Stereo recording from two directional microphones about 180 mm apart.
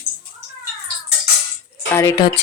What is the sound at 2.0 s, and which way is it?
Speech, 20° left (ahead or behind).